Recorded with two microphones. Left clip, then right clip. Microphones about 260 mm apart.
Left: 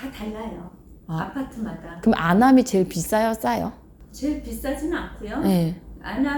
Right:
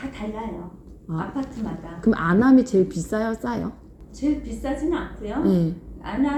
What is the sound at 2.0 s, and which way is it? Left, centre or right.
A woman's voice, left.